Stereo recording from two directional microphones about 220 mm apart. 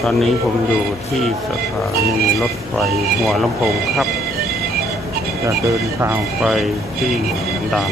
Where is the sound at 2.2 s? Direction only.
Centre (ahead or behind).